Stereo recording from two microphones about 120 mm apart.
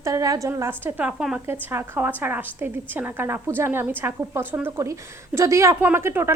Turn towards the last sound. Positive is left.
turn(degrees=-20)  # may be behind; listen again after turning